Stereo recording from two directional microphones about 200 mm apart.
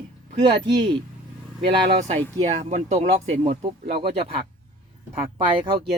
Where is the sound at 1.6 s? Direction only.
30° right (ahead or behind).